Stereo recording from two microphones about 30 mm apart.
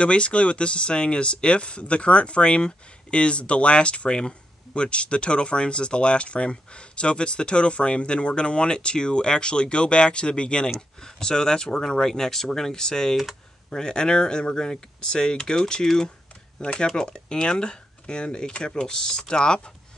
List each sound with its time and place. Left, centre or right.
0.0 s speech: left
11.0 s speech: left
12.8 s speech: left
13.1 s speech: centre
13.7 s speech: left
16.5 s speech: left